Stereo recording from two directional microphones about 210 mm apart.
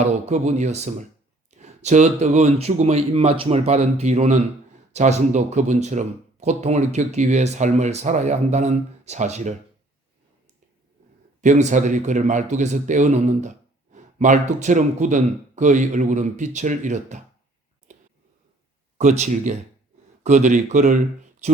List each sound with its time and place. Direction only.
0.0 s speech: 30° right (ahead or behind)
11.3 s speech: 35° right (ahead or behind)
17.9 s a sound: 35° right (ahead or behind)
18.9 s speech: 35° right (ahead or behind)